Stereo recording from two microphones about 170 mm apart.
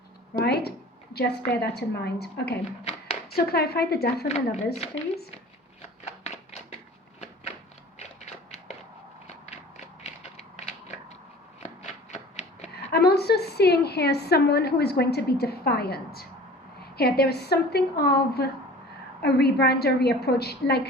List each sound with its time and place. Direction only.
0.4 s a woman's voice: 70° left (ahead or behind)
3.3 s a woman's voice: 65° left (ahead or behind)
4.3 s speech: 40° left (ahead or behind)
6.1 s tap: 40° left (ahead or behind)
7.9 s a sound: 40° left (ahead or behind)
10.0 s mechanisms: 40° left (ahead or behind)
11.6 s shuffling cards: 45° left (ahead or behind)
12.7 s a woman's voice: 70° left (ahead or behind)